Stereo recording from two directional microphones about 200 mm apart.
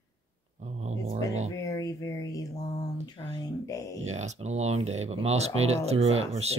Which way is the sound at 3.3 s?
20° left (ahead or behind).